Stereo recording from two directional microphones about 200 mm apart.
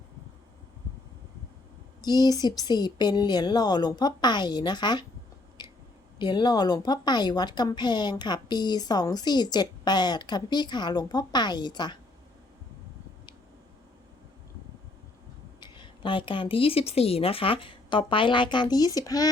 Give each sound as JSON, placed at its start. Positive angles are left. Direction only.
{"t": 2.0, "sound": "speech", "side_deg": 20}
{"t": 5.6, "sound": "clicking", "side_deg": 20}
{"t": 6.1, "sound": "speech", "side_deg": 20}
{"t": 15.6, "sound": "speech", "side_deg": 25}